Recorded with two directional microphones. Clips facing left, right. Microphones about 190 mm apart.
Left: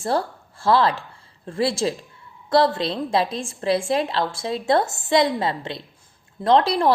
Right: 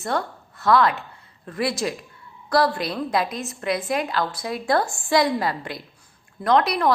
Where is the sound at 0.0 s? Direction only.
30° left (ahead or behind).